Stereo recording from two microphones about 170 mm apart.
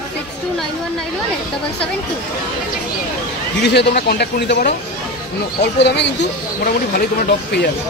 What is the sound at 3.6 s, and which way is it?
A man's voice, 75° left (ahead or behind).